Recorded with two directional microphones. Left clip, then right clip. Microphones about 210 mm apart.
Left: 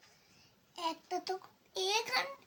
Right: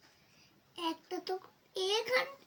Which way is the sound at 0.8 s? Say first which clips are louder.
Left 1 dB; 20° left (ahead or behind).